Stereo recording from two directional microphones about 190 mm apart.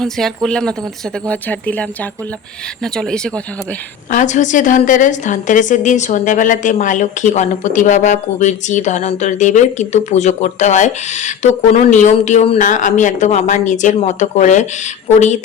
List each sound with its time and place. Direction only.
0.0 s speech: centre (ahead or behind)
4.1 s a woman's voice: 40° left (ahead or behind)